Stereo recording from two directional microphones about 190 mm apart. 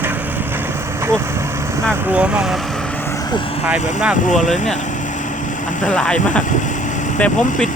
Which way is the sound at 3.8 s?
40° left (ahead or behind).